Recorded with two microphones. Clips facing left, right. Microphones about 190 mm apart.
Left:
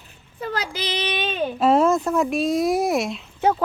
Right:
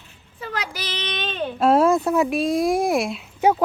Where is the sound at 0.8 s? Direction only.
15° left (ahead or behind).